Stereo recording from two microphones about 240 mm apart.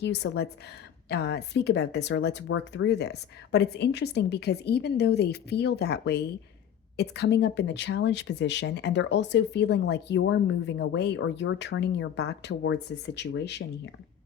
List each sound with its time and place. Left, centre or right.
0.0 s speech: left